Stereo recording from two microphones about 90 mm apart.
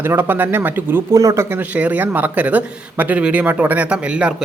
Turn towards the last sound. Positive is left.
turn(degrees=-10)  # may be behind; listen again after turning